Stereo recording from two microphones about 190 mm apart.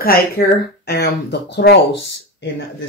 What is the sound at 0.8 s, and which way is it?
Speech, 60° left (ahead or behind).